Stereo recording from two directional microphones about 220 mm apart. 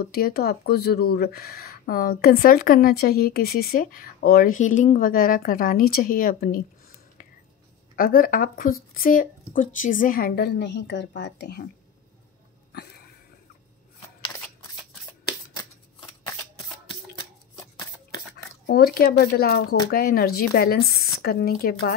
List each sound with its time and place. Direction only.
0.0 s speech: 45° left (ahead or behind)
7.9 s a woman's voice: 40° left (ahead or behind)
18.7 s a woman's voice: 45° left (ahead or behind)